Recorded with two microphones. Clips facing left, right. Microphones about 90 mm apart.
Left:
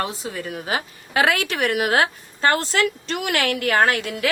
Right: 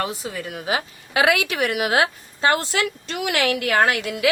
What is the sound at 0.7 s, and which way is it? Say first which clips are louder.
A woman's voice: right 2 dB; 40° left (ahead or behind).